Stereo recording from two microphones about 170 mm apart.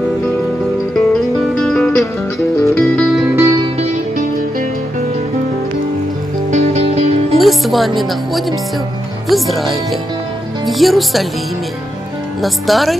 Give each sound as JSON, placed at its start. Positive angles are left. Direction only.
{"t": 1.6, "sound": "music", "side_deg": 5}
{"t": 3.3, "sound": "music", "side_deg": -20}
{"t": 6.5, "sound": "music", "side_deg": -40}
{"t": 7.3, "sound": "speech", "side_deg": 0}
{"t": 12.4, "sound": "speech", "side_deg": 0}